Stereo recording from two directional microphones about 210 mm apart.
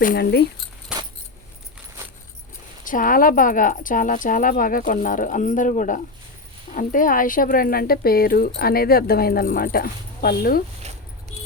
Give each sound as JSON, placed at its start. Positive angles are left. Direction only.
{"t": 0.0, "sound": "speech", "side_deg": 45}
{"t": 0.9, "sound": "keys jangling", "side_deg": -5}
{"t": 2.8, "sound": "speech", "side_deg": 40}